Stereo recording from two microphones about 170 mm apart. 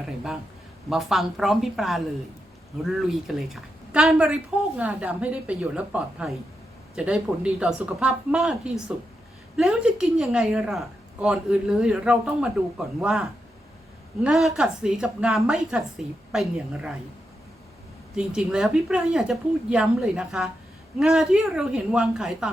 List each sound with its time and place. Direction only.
0.9 s a woman's voice: centre (ahead or behind)
14.3 s a woman's voice: 5° right (ahead or behind)
18.1 s a woman's voice: 5° right (ahead or behind)